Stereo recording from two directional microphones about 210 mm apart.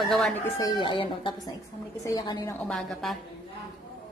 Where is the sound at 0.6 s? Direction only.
20° left (ahead or behind).